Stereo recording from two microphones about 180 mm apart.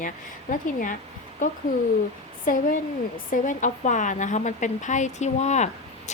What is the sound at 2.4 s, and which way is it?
A woman's voice, 50° left (ahead or behind).